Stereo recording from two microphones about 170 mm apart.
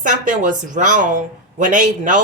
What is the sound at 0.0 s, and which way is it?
A woman's voice, 50° right (ahead or behind).